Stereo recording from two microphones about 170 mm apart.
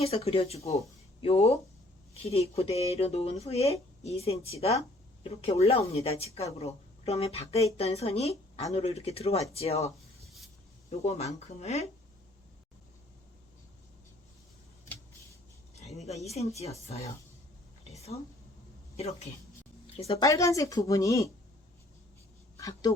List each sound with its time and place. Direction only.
0.0 s speech: 35° left (ahead or behind)
11.0 s speech: 40° left (ahead or behind)
15.7 s a sound: 40° left (ahead or behind)
16.0 s speech: 40° left (ahead or behind)
17.9 s a sound: 40° left (ahead or behind)
18.9 s speech: 40° left (ahead or behind)
20.1 s speech: 20° left (ahead or behind)
22.5 s speech: 20° left (ahead or behind)